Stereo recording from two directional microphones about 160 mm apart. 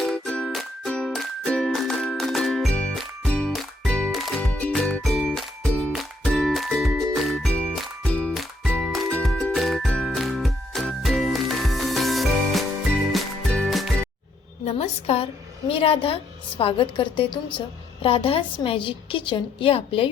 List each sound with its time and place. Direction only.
0.0 s music: 5° left (ahead or behind)
14.6 s a sound: 40° left (ahead or behind)
15.7 s a woman's voice: 35° left (ahead or behind)